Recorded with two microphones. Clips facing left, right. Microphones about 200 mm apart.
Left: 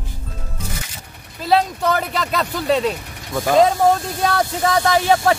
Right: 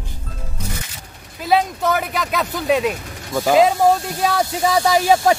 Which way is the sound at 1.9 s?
5° right (ahead or behind).